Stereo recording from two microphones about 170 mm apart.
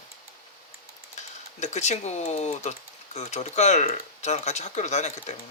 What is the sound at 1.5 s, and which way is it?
Speech, 40° left (ahead or behind).